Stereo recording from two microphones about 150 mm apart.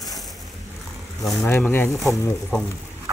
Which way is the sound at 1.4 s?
10° left (ahead or behind).